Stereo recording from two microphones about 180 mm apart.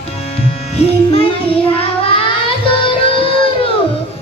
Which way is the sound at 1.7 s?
30° left (ahead or behind).